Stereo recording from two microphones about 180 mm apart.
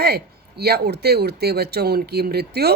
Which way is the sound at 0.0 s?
60° right (ahead or behind).